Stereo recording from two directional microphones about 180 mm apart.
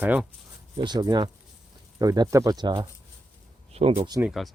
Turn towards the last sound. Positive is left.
turn(degrees=0)  # may be behind; listen again after turning